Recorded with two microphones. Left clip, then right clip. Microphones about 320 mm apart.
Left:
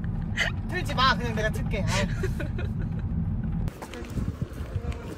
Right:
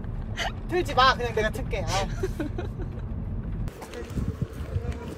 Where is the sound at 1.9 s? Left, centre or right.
Centre.